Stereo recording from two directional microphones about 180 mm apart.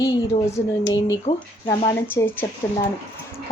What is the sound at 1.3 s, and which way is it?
Speech, 45° left (ahead or behind).